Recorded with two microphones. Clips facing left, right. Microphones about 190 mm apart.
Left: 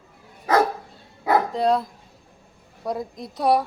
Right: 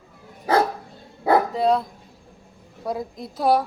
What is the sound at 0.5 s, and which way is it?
Dog, 30° right (ahead or behind).